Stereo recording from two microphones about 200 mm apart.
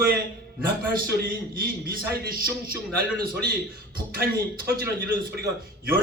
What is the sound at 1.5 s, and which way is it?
Speech, 50° right (ahead or behind).